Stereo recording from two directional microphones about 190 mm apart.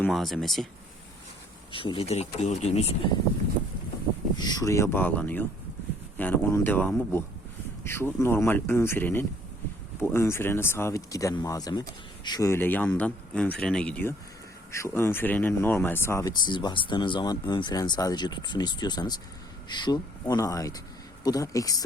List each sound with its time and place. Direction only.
0.0 s speech: centre (ahead or behind)
1.7 s speech: 25° left (ahead or behind)
4.4 s speech: 20° left (ahead or behind)